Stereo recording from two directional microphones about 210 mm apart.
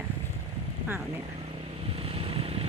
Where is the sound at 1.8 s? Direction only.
25° right (ahead or behind).